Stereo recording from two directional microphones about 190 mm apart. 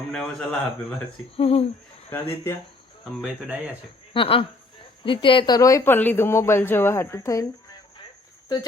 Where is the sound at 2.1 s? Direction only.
15° left (ahead or behind).